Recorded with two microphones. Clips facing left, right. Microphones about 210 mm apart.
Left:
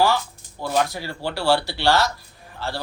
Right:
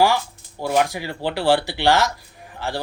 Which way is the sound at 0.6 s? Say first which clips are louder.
Right 3 dB; 15° right (ahead or behind).